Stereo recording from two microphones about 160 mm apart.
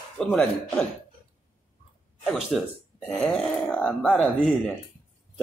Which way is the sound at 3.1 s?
5° left (ahead or behind).